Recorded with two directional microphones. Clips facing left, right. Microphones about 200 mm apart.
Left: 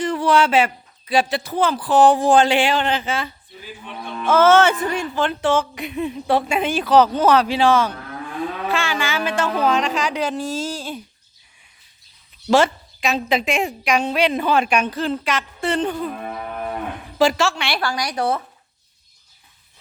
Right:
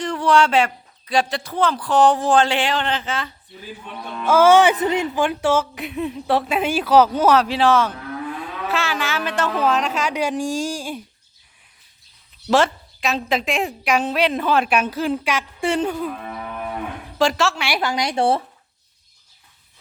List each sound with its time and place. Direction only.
0.0 s speech: 5° left (ahead or behind)
4.2 s a woman's voice: 10° right (ahead or behind)
12.5 s a woman's voice: centre (ahead or behind)
17.2 s a woman's voice: centre (ahead or behind)
17.7 s speech: 20° right (ahead or behind)